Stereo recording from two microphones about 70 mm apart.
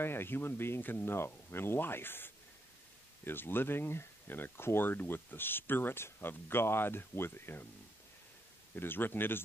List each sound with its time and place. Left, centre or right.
0.0 s speech: left
8.7 s speech: left